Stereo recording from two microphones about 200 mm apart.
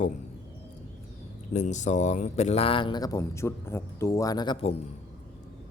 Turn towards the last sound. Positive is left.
turn(degrees=30)  # may be behind; listen again after turning